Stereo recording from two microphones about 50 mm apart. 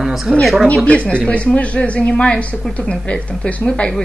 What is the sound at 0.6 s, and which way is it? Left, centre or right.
Speech, left.